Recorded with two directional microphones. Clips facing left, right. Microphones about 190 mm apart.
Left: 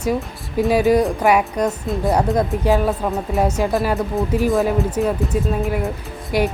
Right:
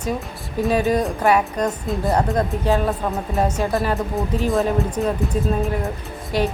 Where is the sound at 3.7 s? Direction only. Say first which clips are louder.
Left 2 dB; centre (ahead or behind).